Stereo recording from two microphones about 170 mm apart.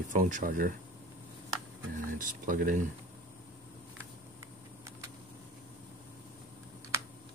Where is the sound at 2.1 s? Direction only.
50° right (ahead or behind).